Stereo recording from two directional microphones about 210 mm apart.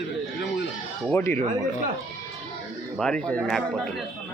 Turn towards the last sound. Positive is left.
turn(degrees=5)  # may be behind; listen again after turning